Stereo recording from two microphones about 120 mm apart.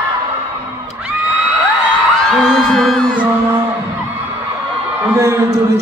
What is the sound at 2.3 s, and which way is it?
Music, centre (ahead or behind).